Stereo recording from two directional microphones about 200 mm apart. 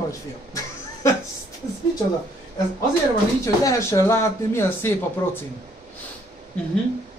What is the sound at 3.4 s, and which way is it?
Speech, 15° left (ahead or behind).